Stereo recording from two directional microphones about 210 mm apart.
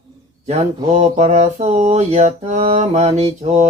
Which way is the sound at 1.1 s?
30° right (ahead or behind).